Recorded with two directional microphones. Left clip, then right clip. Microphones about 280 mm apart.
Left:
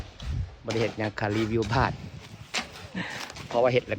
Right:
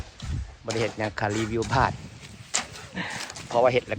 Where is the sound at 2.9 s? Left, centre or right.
Centre.